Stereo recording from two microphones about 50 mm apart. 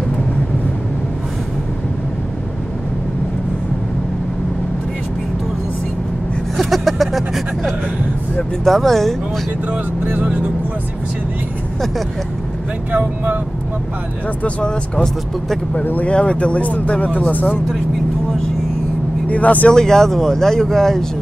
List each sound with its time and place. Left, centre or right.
6.5 s vehicle: centre
8.4 s speech: centre
9.7 s speech: right
12.9 s speech: right
14.4 s speech: left
15.8 s speech: left
16.1 s speech: left
19.2 s speech: left
19.7 s speech: centre